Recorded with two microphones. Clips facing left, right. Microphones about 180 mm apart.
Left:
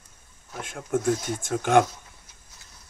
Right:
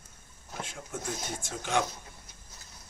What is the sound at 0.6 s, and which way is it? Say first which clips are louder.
Speech: left 15 dB; 55° left (ahead or behind).